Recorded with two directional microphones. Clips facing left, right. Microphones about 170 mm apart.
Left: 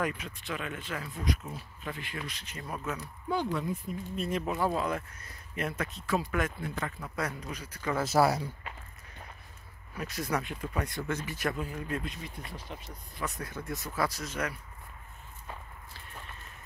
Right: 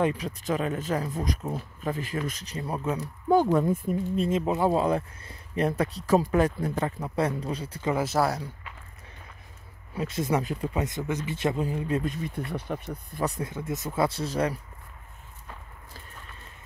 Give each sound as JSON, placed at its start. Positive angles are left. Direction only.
{"t": 0.0, "sound": "speech", "side_deg": -35}
{"t": 3.5, "sound": "speech", "side_deg": -50}
{"t": 4.3, "sound": "speech", "side_deg": -20}
{"t": 8.0, "sound": "speech", "side_deg": 5}
{"t": 9.9, "sound": "speech", "side_deg": -25}
{"t": 12.4, "sound": "speech", "side_deg": -60}
{"t": 13.4, "sound": "speech", "side_deg": -20}